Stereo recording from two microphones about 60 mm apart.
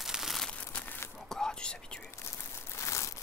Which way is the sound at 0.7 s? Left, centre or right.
Left.